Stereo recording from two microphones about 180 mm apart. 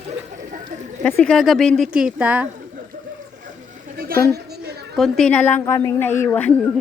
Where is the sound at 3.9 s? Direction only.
55° right (ahead or behind).